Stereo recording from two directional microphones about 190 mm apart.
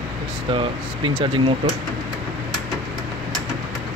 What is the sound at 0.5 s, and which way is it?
Speech, 25° right (ahead or behind).